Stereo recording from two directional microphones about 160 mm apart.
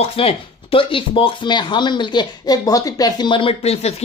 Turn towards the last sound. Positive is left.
turn(degrees=40)  # may be behind; listen again after turning